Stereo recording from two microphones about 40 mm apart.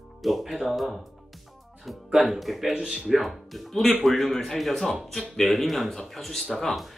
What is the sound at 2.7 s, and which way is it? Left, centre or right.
Speech, centre.